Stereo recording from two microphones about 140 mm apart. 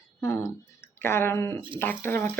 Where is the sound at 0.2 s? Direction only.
20° left (ahead or behind).